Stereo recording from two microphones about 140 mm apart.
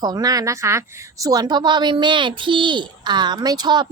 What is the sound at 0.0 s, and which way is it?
A woman's voice, 25° right (ahead or behind).